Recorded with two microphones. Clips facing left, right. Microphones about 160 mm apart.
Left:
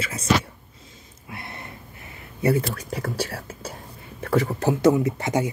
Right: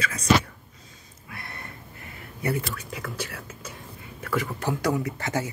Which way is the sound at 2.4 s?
35° left (ahead or behind).